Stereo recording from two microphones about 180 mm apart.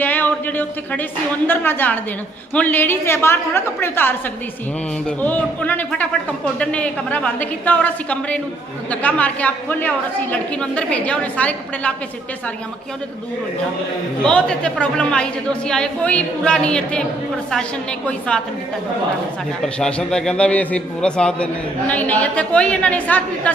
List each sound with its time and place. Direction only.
0.0 s a sound: 10° left (ahead or behind)
1.5 s a man's voice: 10° left (ahead or behind)
14.3 s speech: 5° left (ahead or behind)
19.6 s a man's voice: 5° left (ahead or behind)